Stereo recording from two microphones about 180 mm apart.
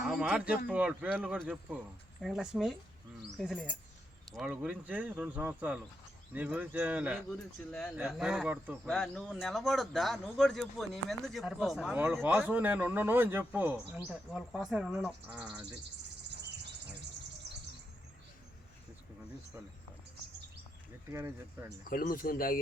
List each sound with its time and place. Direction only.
0.0 s speech: 5° right (ahead or behind)
12.2 s speech: 10° right (ahead or behind)
21.1 s speech: 15° right (ahead or behind)
21.8 s speech: 55° left (ahead or behind)